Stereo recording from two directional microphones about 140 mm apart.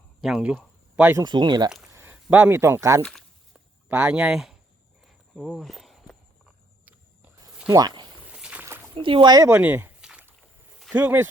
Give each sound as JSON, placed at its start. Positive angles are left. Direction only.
{"t": 0.2, "sound": "a sound", "side_deg": -5}
{"t": 1.1, "sound": "speech", "side_deg": -30}
{"t": 1.9, "sound": "speech", "side_deg": -15}
{"t": 3.0, "sound": "speech", "side_deg": 0}
{"t": 3.8, "sound": "speech", "side_deg": -10}
{"t": 5.0, "sound": "walk", "side_deg": 0}
{"t": 7.7, "sound": "speech", "side_deg": -30}
{"t": 8.2, "sound": "boat", "side_deg": -10}
{"t": 9.0, "sound": "speech", "side_deg": -35}
{"t": 9.5, "sound": "speech", "side_deg": -15}
{"t": 10.0, "sound": "rowboat", "side_deg": -10}
{"t": 10.8, "sound": "speech", "side_deg": -5}